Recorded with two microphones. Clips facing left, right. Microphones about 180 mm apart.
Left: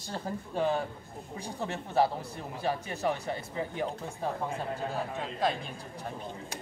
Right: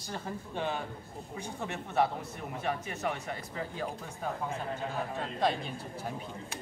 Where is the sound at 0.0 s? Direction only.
35° left (ahead or behind).